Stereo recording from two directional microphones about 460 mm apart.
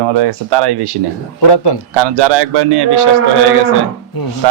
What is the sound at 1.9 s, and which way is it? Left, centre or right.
Speech, right.